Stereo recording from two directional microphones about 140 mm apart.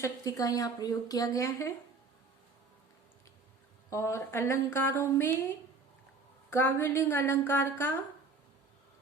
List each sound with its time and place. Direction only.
0.0 s a woman's voice: 25° left (ahead or behind)
3.8 s a woman's voice: 20° left (ahead or behind)
6.5 s a woman's voice: 20° left (ahead or behind)